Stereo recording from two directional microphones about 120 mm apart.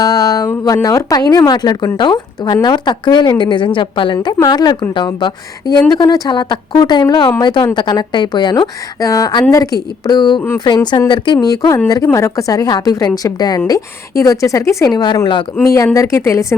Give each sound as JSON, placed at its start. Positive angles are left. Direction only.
{"t": 0.0, "sound": "a woman's voice", "side_deg": 30}
{"t": 15.6, "sound": "speech", "side_deg": 25}